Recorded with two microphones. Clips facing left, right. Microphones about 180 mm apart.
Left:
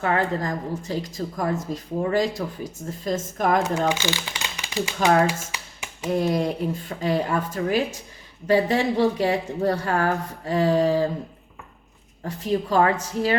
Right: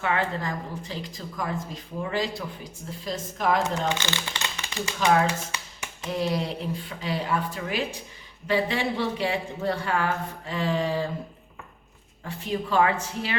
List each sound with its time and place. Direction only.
0.0 s speech: 40° left (ahead or behind)
3.9 s speech: 10° left (ahead or behind)
6.1 s a woman's voice: 45° left (ahead or behind)
12.2 s a woman's voice: 40° left (ahead or behind)